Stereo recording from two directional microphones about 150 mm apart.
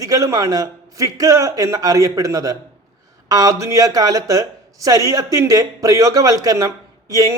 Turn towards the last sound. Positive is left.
turn(degrees=-25)  # may be behind; listen again after turning